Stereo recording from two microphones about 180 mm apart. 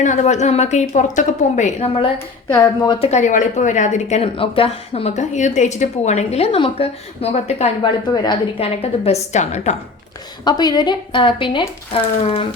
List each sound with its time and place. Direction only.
0.0 s a woman's voice: 40° left (ahead or behind)
2.1 s speech: 20° left (ahead or behind)
3.1 s a woman's voice: 40° left (ahead or behind)
10.4 s a woman's voice: 20° left (ahead or behind)